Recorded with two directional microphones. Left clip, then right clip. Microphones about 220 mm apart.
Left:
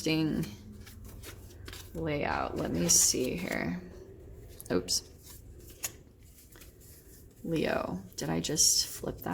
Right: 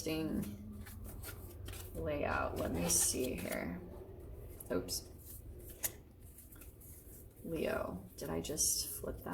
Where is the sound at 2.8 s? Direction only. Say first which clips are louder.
Left 11 dB; 50° left (ahead or behind).